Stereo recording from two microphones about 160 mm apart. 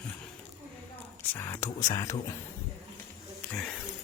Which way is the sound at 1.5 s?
20° left (ahead or behind).